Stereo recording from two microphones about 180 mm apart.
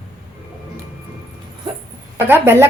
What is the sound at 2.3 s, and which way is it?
Speech, 10° right (ahead or behind).